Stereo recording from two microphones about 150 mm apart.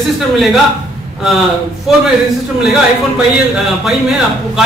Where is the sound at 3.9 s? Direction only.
Centre (ahead or behind).